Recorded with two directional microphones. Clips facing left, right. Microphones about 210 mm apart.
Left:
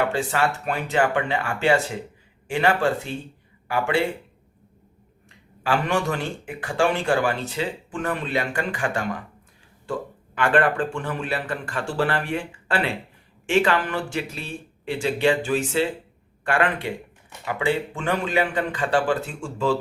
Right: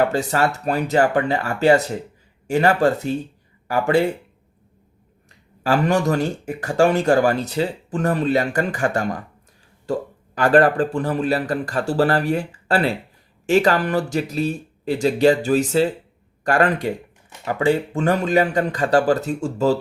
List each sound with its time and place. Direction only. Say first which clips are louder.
0.1 s speech: right 3 dB; 40° right (ahead or behind)
5.6 s speech: right 5 dB; 40° right (ahead or behind)